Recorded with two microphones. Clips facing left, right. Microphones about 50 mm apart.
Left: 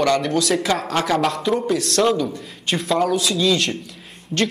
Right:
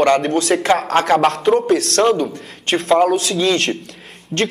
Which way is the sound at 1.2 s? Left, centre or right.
Right.